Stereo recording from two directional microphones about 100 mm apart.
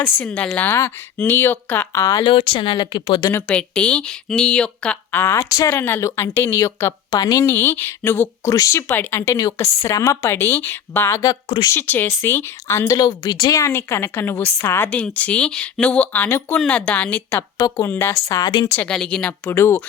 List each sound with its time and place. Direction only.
0.3 s speech: 15° left (ahead or behind)
1.9 s a woman's voice: 30° left (ahead or behind)
2.2 s speech: 60° left (ahead or behind)
3.3 s speech: 15° left (ahead or behind)
5.2 s speech: 30° left (ahead or behind)
5.7 s speech: 20° left (ahead or behind)
7.1 s a woman's voice: 40° left (ahead or behind)
7.4 s speech: 20° left (ahead or behind)
9.2 s a woman's voice: 35° left (ahead or behind)
14.8 s speech: 15° left (ahead or behind)
18.3 s a woman's voice: 40° left (ahead or behind)
18.8 s speech: 10° left (ahead or behind)
19.5 s speech: 25° left (ahead or behind)